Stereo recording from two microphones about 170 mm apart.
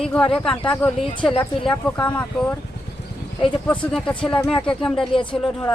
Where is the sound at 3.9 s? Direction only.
5° left (ahead or behind).